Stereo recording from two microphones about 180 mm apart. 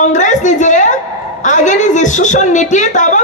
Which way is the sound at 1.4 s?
40° left (ahead or behind).